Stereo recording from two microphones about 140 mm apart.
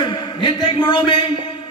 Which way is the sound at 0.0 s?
35° left (ahead or behind).